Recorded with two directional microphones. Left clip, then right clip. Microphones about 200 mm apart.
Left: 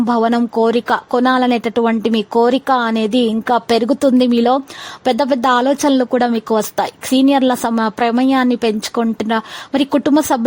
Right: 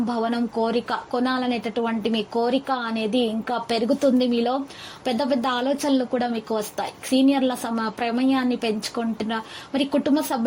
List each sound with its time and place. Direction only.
0.1 s a woman's voice: 45° left (ahead or behind)